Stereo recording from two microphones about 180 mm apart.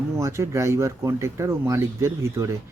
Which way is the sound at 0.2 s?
15° right (ahead or behind).